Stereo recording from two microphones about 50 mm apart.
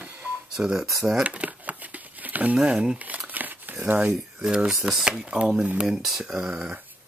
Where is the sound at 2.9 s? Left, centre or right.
Right.